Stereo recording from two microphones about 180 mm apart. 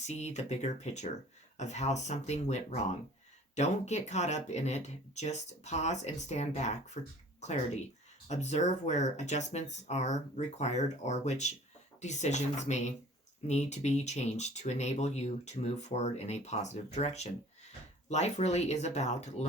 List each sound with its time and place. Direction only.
0.1 s speech: 40° left (ahead or behind)